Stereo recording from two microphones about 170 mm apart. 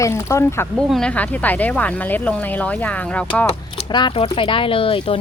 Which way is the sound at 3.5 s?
30° left (ahead or behind).